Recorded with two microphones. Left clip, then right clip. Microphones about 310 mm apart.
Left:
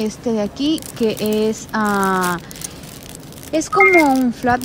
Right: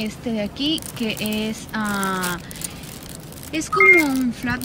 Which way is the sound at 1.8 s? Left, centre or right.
Right.